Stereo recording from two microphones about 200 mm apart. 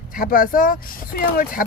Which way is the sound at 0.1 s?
45° left (ahead or behind).